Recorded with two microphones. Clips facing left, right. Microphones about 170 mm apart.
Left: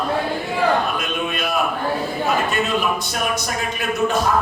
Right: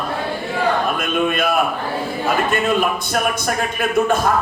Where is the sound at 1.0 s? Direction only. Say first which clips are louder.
Right 5 dB; 50° right (ahead or behind).